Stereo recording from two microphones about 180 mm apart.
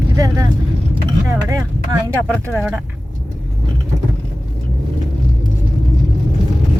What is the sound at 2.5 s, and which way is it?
Speech, 10° right (ahead or behind).